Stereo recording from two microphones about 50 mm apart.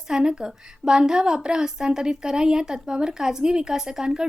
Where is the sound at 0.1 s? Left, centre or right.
Centre.